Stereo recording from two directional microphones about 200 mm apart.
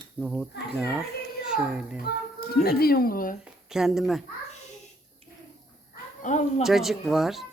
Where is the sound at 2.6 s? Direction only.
50° left (ahead or behind).